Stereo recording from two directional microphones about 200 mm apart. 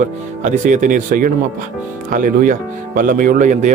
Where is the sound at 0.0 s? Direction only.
40° right (ahead or behind).